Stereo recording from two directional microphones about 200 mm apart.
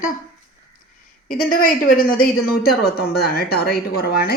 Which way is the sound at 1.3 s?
45° left (ahead or behind).